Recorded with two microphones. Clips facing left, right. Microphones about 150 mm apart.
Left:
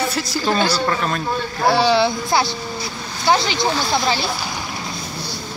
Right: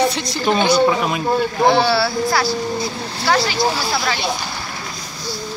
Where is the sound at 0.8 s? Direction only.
10° right (ahead or behind).